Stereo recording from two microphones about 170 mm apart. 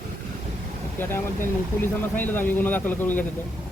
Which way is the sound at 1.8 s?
10° left (ahead or behind).